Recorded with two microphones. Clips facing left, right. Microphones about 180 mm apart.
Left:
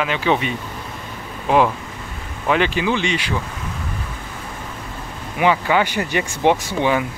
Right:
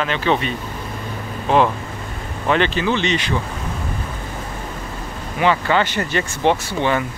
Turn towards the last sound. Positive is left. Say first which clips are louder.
# left 1 dB
turn(degrees=10)  # may be behind; listen again after turning